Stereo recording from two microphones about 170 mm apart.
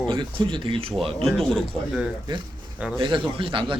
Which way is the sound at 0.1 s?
30° right (ahead or behind).